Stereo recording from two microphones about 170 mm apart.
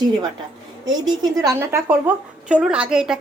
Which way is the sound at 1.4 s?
20° right (ahead or behind).